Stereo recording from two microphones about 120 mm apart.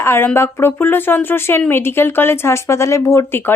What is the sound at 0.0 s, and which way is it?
Speech, 20° left (ahead or behind).